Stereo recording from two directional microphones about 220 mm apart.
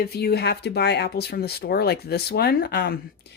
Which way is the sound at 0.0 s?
45° left (ahead or behind).